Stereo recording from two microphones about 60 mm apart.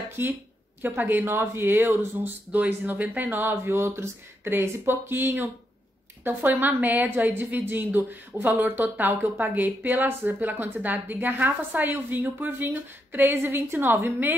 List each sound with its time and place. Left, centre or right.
0.2 s a woman's voice: right
2.2 s a woman's voice: right
3.6 s mantra: right
4.5 s a woman's voice: right